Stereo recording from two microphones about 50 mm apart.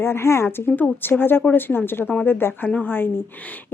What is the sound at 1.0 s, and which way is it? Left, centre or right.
Speech, left.